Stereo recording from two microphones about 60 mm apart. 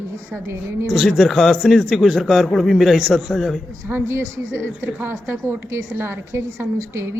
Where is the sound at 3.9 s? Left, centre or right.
Right.